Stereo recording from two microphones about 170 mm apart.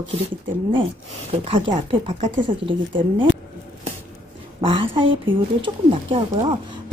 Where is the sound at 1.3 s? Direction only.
35° right (ahead or behind).